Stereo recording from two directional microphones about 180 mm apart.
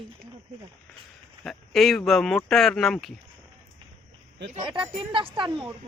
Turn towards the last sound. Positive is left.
turn(degrees=-25)  # may be behind; listen again after turning